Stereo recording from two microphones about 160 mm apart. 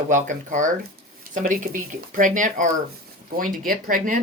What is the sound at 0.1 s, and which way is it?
Speech, 50° right (ahead or behind).